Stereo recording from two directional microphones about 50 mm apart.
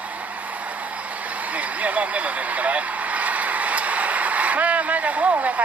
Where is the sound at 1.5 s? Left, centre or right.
Right.